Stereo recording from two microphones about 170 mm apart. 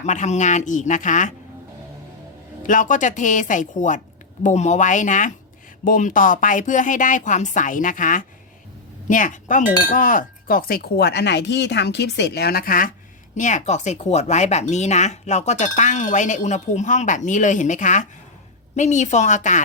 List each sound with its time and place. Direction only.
0.0 s speech: 45° left (ahead or behind)
2.6 s a woman's voice: 50° left (ahead or behind)
13.3 s speech: 45° left (ahead or behind)